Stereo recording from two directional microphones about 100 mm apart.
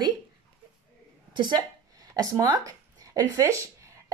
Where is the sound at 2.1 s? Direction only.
35° right (ahead or behind).